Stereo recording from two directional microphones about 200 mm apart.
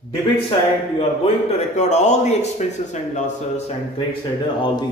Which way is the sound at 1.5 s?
35° left (ahead or behind).